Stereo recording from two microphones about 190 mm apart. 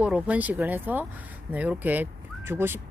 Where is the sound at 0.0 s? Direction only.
5° right (ahead or behind).